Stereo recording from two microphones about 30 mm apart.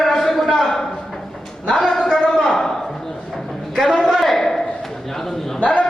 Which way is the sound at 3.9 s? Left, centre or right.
Left.